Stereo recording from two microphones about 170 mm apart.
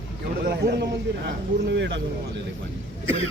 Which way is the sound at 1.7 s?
90° right.